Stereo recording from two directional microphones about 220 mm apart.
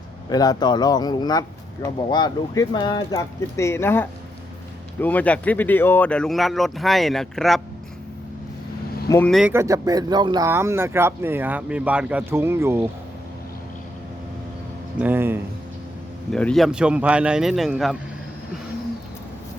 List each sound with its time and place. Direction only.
0.3 s speech: 15° left (ahead or behind); by 7.6 s centre (ahead or behind)
9.0 s speech: 10° left (ahead or behind)
9.3 s speech: 5° right (ahead or behind)
14.9 s speech: 10° right (ahead or behind)
16.3 s speech: 5° left (ahead or behind)